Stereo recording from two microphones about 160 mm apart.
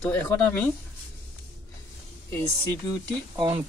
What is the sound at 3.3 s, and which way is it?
Speech, 35° right (ahead or behind).